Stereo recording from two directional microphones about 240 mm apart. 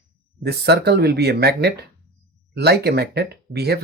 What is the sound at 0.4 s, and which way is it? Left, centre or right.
Speech, right.